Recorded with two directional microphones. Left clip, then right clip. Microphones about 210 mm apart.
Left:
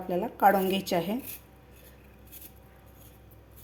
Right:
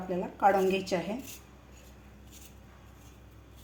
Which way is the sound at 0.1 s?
35° left (ahead or behind).